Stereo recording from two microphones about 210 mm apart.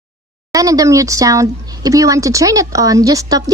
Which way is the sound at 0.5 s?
15° right (ahead or behind).